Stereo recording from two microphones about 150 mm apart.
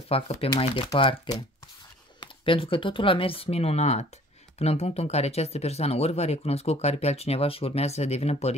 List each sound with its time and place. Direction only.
0.1 s speech: 40° left (ahead or behind)
2.4 s speech: 35° left (ahead or behind)